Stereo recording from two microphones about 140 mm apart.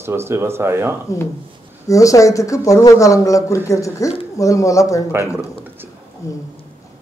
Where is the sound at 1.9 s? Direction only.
25° left (ahead or behind).